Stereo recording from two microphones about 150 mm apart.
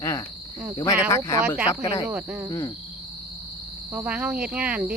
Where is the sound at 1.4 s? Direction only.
10° right (ahead or behind).